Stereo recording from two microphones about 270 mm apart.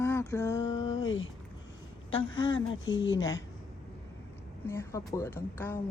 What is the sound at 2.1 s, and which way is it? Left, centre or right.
A woman's voice, left.